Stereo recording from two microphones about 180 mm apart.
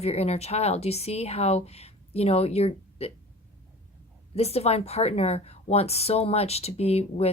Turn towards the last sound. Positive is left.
turn(degrees=35)  # may be behind; listen again after turning